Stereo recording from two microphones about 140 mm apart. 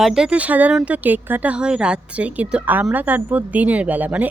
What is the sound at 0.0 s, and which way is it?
A woman's voice, 5° right (ahead or behind).